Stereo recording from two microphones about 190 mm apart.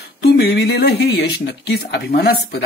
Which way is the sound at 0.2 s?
60° left (ahead or behind).